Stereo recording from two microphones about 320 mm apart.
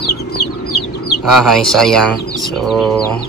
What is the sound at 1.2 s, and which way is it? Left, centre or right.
Speech, centre.